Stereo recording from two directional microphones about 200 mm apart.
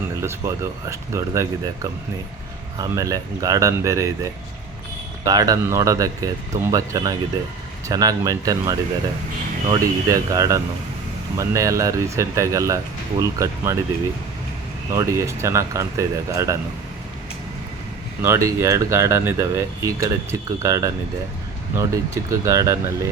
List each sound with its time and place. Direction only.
0.2 s speech: 15° right (ahead or behind)
14.9 s speech: 15° right (ahead or behind)
18.2 s speech: 15° right (ahead or behind)